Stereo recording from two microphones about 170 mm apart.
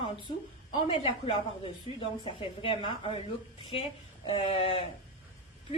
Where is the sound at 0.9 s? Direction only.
35° left (ahead or behind).